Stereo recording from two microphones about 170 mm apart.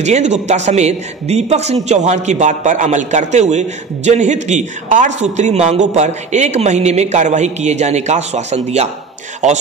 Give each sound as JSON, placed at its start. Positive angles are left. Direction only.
{"t": 0.0, "sound": "a man's voice", "side_deg": -40}